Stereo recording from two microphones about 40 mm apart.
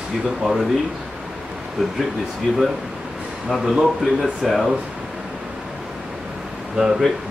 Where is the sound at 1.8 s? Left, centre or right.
Centre.